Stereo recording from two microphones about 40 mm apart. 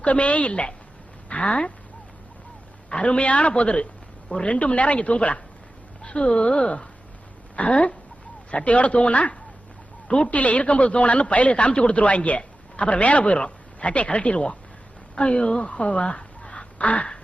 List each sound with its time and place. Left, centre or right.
0.0 s speech: left
2.9 s speech: left